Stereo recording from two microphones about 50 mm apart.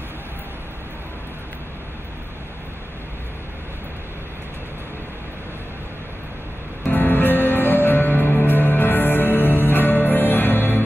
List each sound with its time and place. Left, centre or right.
6.8 s music: left